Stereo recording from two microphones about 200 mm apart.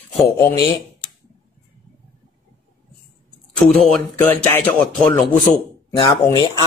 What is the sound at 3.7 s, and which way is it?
Speech, 5° left (ahead or behind).